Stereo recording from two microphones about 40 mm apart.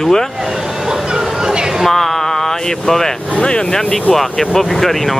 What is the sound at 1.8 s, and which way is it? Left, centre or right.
Speech, centre.